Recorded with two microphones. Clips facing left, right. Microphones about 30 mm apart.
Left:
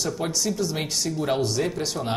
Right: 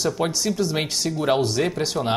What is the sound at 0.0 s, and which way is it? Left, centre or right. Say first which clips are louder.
Speech: right 3 dB; right.